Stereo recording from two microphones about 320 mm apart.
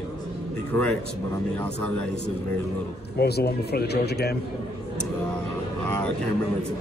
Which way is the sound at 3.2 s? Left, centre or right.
Left.